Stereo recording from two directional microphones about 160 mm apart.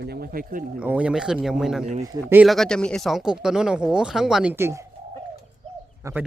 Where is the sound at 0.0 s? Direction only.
85° right.